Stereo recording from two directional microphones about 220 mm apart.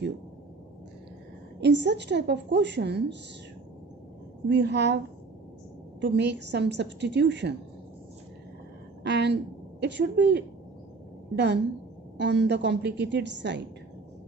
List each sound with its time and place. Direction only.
1.6 s a woman's voice: 50° right (ahead or behind)
4.4 s a woman's voice: 50° right (ahead or behind)
6.0 s a woman's voice: 50° right (ahead or behind)
9.0 s a woman's voice: 50° right (ahead or behind)